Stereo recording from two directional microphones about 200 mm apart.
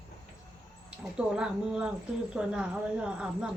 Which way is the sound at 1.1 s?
5° right (ahead or behind).